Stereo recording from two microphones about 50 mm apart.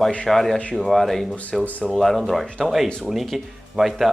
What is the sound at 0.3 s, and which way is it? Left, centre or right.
Speech, centre.